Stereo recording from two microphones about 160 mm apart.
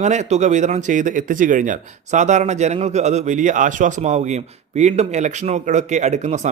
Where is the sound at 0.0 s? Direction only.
45° right (ahead or behind).